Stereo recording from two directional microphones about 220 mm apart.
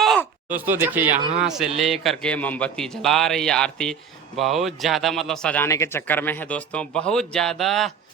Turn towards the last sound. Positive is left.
turn(degrees=0)  # may be behind; listen again after turning